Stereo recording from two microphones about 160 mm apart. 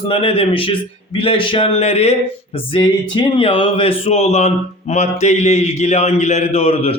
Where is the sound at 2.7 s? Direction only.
30° left (ahead or behind).